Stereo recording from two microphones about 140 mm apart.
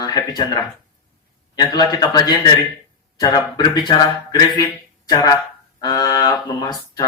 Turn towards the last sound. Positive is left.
turn(degrees=30)  # may be behind; listen again after turning